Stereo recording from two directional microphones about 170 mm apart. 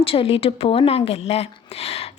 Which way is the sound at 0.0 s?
35° left (ahead or behind).